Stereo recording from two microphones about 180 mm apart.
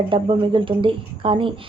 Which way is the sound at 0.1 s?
30° right (ahead or behind).